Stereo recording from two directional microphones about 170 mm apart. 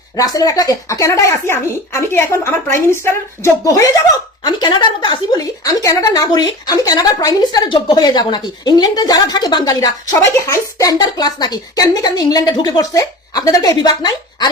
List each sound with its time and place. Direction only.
0.2 s a woman's voice: 20° left (ahead or behind)